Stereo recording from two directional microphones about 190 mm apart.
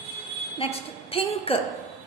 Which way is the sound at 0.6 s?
30° left (ahead or behind).